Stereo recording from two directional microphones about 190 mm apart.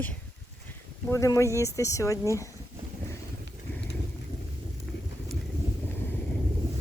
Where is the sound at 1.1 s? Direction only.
15° left (ahead or behind).